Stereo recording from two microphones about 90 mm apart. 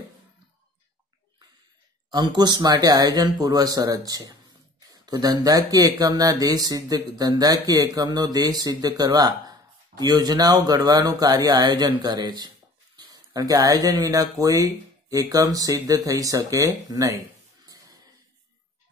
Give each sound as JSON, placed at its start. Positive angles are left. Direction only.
{"t": 2.0, "sound": "speech", "side_deg": -55}